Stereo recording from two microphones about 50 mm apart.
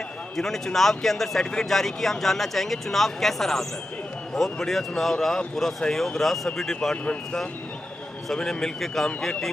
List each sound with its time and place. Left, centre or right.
0.4 s speech: centre
8.3 s speech: centre